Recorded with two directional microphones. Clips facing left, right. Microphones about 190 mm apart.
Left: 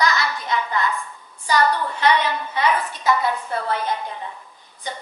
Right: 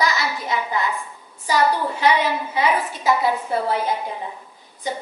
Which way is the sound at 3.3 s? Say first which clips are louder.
Right 3 dB; 20° right (ahead or behind).